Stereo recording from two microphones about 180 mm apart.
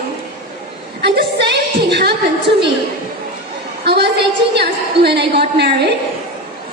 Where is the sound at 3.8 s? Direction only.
65° right (ahead or behind).